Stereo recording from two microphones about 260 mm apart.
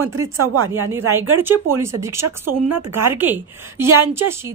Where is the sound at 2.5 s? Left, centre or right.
Right.